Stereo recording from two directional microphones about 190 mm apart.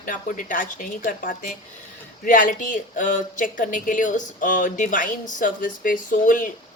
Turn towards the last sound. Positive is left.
turn(degrees=45)  # may be behind; listen again after turning